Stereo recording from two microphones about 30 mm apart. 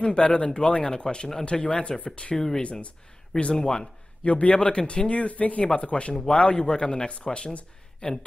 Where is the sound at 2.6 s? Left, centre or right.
Left.